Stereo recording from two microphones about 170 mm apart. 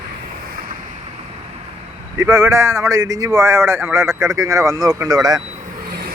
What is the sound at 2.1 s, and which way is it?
Speech, 15° right (ahead or behind).